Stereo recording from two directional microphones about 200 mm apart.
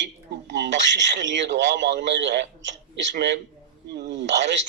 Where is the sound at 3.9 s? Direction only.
60° right (ahead or behind).